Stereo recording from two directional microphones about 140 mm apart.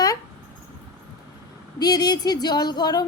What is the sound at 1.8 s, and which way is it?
A woman's voice, 30° left (ahead or behind).